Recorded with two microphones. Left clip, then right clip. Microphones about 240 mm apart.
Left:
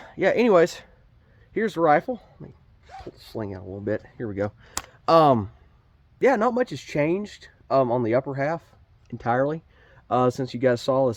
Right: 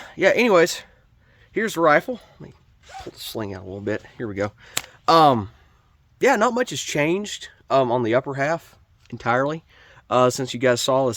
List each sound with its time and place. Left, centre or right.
0.0 s speech: centre
3.1 s speech: right; by 5.5 s centre
6.1 s speech: right